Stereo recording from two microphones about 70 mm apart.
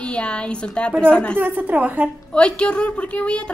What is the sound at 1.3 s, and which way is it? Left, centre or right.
Speech, right.